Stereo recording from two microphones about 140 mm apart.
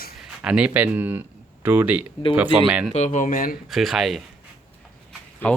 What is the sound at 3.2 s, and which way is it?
Speech, 80° left.